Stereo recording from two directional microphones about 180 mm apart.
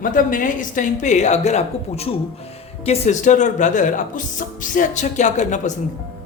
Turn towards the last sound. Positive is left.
turn(degrees=40)  # may be behind; listen again after turning